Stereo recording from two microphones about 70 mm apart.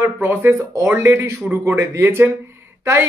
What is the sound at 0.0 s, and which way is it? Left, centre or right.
Speech, right.